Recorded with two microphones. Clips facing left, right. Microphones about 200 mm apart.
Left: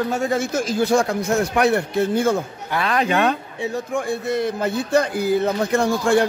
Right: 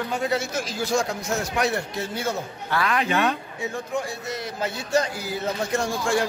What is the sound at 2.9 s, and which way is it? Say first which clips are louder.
Speech: left 5 dB; 40° left (ahead or behind).